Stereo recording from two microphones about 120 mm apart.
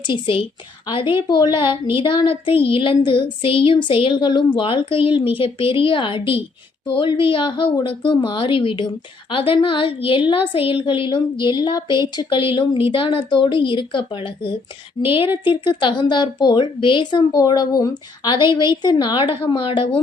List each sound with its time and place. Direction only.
0.0 s a woman's voice: 45° left (ahead or behind)